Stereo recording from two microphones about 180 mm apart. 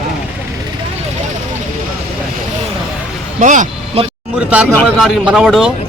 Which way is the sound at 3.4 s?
45° right (ahead or behind).